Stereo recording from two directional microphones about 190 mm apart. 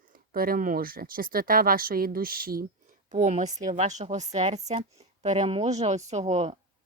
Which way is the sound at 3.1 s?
40° right (ahead or behind).